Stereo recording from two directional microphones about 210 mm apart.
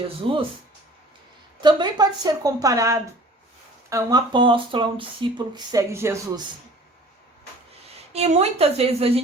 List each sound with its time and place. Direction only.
0.2 s speech: 25° right (ahead or behind)
1.6 s speech: 20° right (ahead or behind)
8.1 s speech: 30° right (ahead or behind)